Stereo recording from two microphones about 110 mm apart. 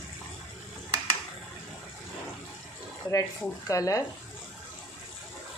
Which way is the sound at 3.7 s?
30° left (ahead or behind).